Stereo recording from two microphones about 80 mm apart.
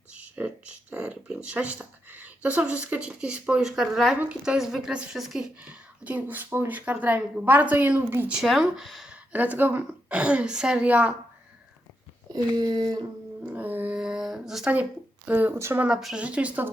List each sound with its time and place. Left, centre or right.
0.1 s a sound: centre
4.4 s speech: centre
5.5 s speech: centre
8.4 s speech: centre
9.3 s speech: right
12.3 s speech: right
13.4 s music: right
13.9 s a sound: centre
15.3 s speech: right
15.5 s speech: right
16.1 s speech: centre